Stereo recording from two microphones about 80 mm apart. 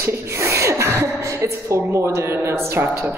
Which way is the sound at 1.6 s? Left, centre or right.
Right.